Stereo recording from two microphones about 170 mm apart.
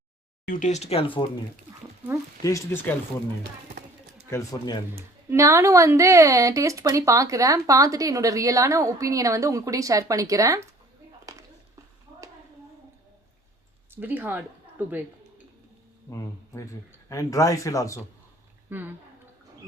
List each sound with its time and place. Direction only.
0.4 s speech: 50° left (ahead or behind); by 1.2 s 35° left (ahead or behind)
2.4 s speech: 20° left (ahead or behind)
4.3 s speech: 20° left (ahead or behind)
5.3 s speech: 15° right (ahead or behind)
13.9 s a woman's voice: 10° right (ahead or behind)
16.6 s speech: 20° left (ahead or behind)
18.7 s a woman's voice: 10° right (ahead or behind)